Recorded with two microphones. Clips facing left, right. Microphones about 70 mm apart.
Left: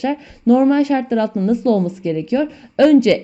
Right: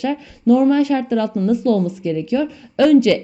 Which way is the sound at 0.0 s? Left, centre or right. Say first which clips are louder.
Left 1 dB; left.